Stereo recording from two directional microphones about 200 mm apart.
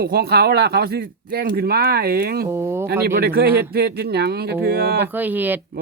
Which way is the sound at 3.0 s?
50° right (ahead or behind).